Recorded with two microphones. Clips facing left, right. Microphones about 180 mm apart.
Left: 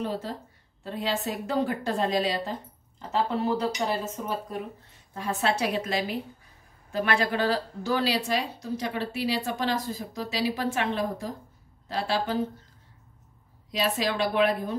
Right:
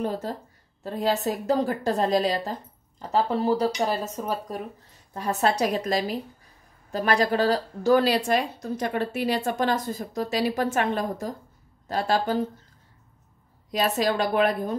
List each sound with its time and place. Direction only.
0.0 s speech: 45° right (ahead or behind)
13.7 s speech: 45° right (ahead or behind)